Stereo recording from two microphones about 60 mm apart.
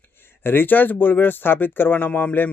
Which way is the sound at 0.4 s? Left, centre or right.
Left.